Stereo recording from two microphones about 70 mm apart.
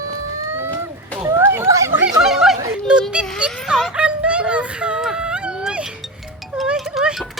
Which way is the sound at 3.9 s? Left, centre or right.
Centre.